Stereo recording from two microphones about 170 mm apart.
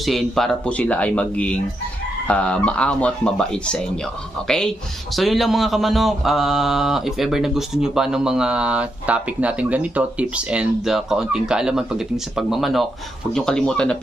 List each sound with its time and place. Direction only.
0.0 s speech: centre (ahead or behind)